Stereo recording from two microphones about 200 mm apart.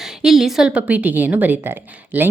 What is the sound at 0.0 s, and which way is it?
A woman's voice, centre (ahead or behind).